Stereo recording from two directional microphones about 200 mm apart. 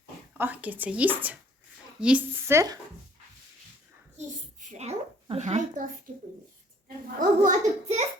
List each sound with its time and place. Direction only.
0.3 s speech: 10° right (ahead or behind)
4.6 s a woman's voice: 35° right (ahead or behind)